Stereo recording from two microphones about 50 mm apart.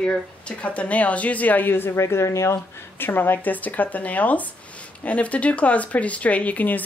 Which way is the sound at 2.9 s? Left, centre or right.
Left.